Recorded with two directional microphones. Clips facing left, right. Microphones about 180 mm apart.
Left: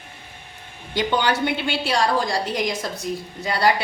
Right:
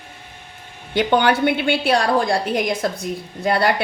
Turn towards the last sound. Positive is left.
turn(degrees=-55)  # may be behind; listen again after turning